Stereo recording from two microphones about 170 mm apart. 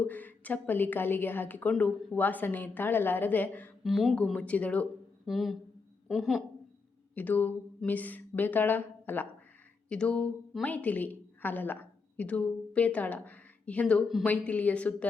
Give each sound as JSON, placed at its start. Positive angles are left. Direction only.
{"t": 0.0, "sound": "a woman's voice", "side_deg": 10}
{"t": 3.8, "sound": "speech", "side_deg": 0}
{"t": 7.2, "sound": "a woman's voice", "side_deg": 10}